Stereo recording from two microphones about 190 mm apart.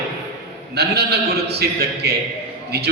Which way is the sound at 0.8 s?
60° right (ahead or behind).